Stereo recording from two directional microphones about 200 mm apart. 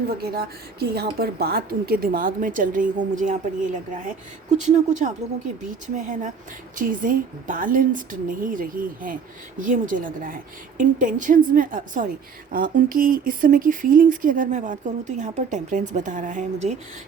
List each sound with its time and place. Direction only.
0.2 s a woman's voice: 50° right (ahead or behind)